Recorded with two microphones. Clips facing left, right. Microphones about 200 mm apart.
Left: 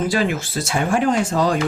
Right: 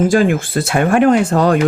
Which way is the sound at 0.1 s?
50° right (ahead or behind).